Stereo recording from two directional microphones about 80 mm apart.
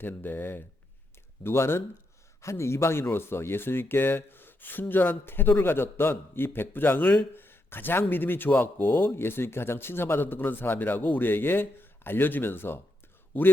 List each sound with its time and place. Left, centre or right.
0.0 s speech: left